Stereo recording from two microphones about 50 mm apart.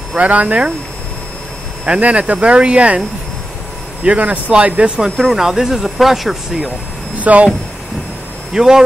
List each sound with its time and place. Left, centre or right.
0.2 s speech: right
1.9 s speech: right
4.0 s speech: right
5.2 s speech: centre
7.2 s speech: right
8.5 s speech: centre